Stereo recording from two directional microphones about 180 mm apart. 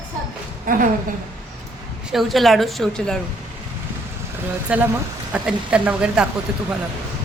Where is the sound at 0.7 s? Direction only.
50° right (ahead or behind).